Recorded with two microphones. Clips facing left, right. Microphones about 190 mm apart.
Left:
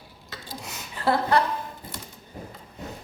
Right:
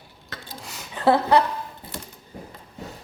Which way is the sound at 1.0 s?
20° right (ahead or behind).